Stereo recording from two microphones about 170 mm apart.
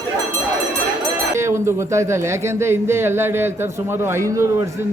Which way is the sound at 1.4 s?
15° right (ahead or behind).